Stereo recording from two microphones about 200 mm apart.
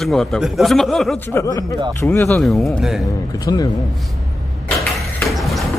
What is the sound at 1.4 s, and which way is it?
Speech, 20° left (ahead or behind).